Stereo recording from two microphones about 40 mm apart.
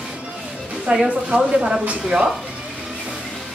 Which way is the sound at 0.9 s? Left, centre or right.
Right.